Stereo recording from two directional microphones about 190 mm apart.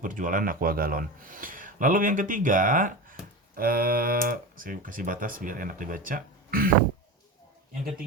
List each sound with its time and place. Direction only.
0.0 s a man's voice: 45° right (ahead or behind)